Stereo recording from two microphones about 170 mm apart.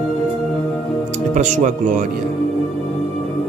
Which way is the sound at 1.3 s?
45° right (ahead or behind).